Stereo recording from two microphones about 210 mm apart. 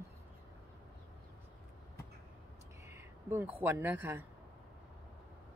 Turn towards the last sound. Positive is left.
turn(degrees=-10)  # may be behind; listen again after turning